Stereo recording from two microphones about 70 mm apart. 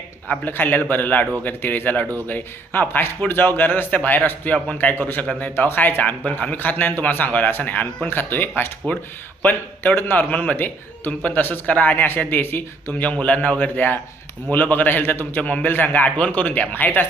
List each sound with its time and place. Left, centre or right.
0.3 s a man's voice: left
5.4 s a man's voice: left
12.9 s a man's voice: centre